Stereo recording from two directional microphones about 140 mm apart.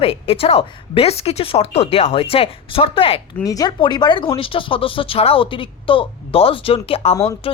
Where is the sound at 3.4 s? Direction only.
25° left (ahead or behind); by 7.6 s 40° left (ahead or behind).